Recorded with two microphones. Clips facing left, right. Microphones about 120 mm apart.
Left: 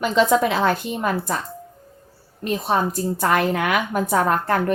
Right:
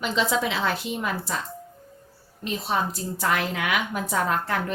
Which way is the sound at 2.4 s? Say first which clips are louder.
Left 5 dB; 55° left (ahead or behind).